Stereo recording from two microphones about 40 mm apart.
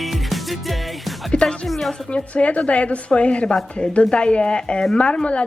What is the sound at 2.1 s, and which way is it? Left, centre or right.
A woman's voice, left.